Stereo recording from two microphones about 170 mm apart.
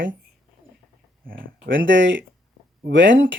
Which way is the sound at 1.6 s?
90° right.